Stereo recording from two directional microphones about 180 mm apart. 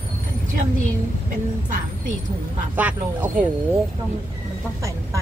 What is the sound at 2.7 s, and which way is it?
Speech, 10° right (ahead or behind).